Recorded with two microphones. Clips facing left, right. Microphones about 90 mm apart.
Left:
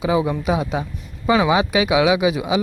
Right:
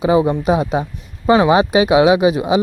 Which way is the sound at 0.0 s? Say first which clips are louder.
Right 5 dB; 50° right (ahead or behind).